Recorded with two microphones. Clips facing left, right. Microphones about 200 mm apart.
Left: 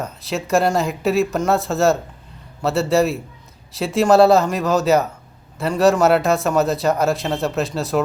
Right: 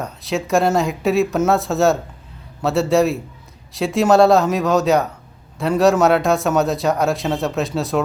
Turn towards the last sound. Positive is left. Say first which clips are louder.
# right 1 dB
turn(degrees=0)  # may be behind; listen again after turning